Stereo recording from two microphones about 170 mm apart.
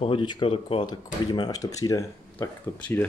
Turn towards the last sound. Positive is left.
turn(degrees=10)  # may be behind; listen again after turning